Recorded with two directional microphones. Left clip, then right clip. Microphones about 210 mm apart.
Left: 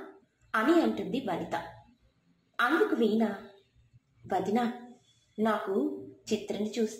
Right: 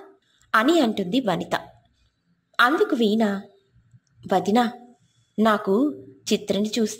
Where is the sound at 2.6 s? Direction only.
40° right (ahead or behind).